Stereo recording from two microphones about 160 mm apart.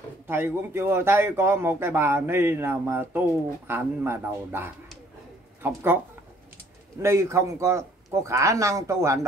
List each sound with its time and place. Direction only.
0.3 s a man's voice: 15° right (ahead or behind)
7.0 s a man's voice: 15° right (ahead or behind)